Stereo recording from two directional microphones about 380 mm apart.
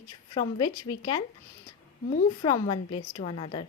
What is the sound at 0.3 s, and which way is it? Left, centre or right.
Speech, centre.